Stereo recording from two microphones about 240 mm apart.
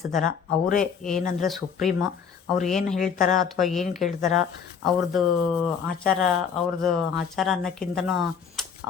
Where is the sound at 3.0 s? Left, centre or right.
Left.